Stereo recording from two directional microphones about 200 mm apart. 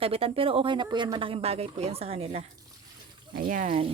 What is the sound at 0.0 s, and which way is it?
A woman's voice, 30° right (ahead or behind).